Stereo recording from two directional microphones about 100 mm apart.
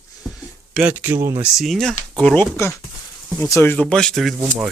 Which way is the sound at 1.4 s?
Centre (ahead or behind).